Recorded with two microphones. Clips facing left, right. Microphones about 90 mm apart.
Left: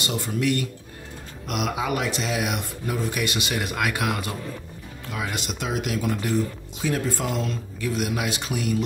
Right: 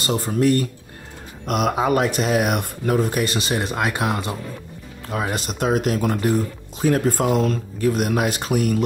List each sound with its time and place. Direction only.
0.0 s speech: 40° right (ahead or behind)
5.1 s speech: 40° right (ahead or behind)